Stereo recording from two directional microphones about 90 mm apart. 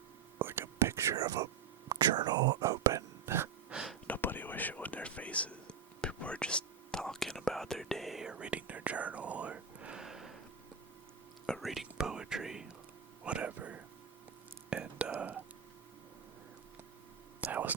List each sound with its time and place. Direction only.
0.3 s whispering: 25° right (ahead or behind)
3.7 s gasp: 5° right (ahead or behind)
4.0 s whispering: 20° left (ahead or behind); by 10.3 s 5° right (ahead or behind)
11.4 s whispering: centre (ahead or behind)
13.2 s a sound: 15° right (ahead or behind)
14.7 s whispering: 15° right (ahead or behind)
15.2 s a sound: 20° right (ahead or behind)
17.4 s whispering: 20° right (ahead or behind)